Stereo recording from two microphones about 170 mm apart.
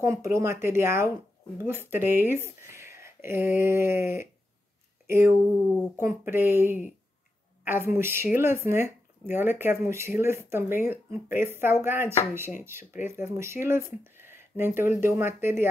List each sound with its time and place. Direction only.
0.0 s speech: 15° right (ahead or behind)